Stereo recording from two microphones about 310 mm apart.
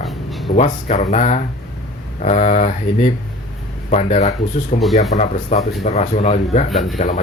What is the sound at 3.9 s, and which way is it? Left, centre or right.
Speech, left.